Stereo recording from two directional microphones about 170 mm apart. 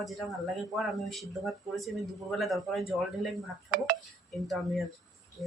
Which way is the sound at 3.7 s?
60° right (ahead or behind).